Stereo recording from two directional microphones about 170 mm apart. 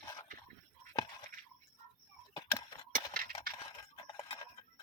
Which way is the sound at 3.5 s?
60° right (ahead or behind).